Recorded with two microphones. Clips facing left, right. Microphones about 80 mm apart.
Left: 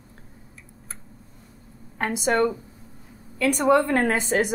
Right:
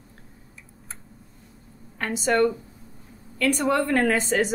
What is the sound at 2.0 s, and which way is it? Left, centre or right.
Speech, left.